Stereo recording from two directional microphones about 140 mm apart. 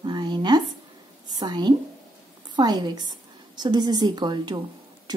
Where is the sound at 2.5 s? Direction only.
30° right (ahead or behind).